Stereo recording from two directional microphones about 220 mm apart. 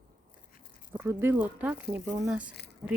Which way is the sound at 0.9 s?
10° right (ahead or behind).